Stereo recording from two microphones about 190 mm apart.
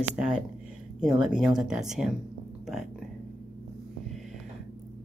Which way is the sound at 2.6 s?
Centre (ahead or behind).